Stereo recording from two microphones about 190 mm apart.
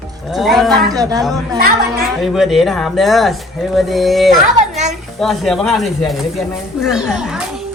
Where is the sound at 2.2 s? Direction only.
Centre (ahead or behind).